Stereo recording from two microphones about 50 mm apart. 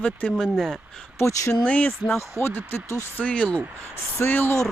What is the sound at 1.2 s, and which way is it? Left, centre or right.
Speech, left.